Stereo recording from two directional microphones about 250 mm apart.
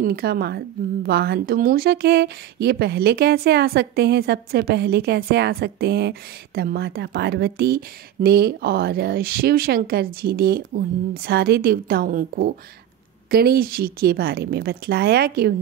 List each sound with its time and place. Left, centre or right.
0.0 s a woman's voice: right